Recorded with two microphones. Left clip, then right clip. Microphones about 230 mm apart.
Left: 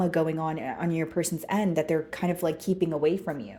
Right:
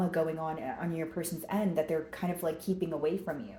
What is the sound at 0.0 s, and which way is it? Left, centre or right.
Speech, left.